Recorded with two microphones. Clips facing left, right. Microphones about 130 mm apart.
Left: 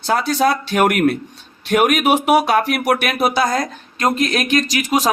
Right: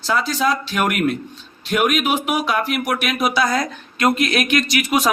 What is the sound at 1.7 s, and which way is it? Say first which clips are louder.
Speech: left 4 dB; 70° left (ahead or behind).